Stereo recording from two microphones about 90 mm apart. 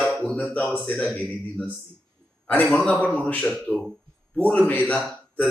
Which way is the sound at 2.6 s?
10° left (ahead or behind).